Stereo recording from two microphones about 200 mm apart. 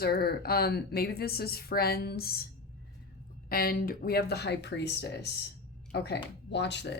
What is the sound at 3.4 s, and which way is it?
A woman's voice, 45° left (ahead or behind).